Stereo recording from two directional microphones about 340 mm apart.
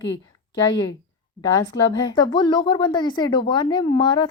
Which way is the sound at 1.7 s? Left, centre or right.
Left.